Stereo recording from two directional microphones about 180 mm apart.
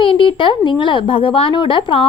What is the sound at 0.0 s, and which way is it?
A woman's voice, 30° left (ahead or behind).